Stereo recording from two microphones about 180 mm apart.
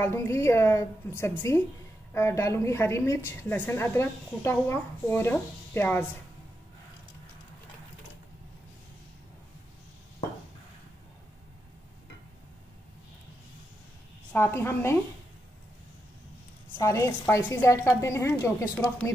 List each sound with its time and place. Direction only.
0.0 s a woman's voice: 15° left (ahead or behind)
14.3 s a woman's voice: 15° left (ahead or behind)
16.8 s a woman's voice: 15° left (ahead or behind)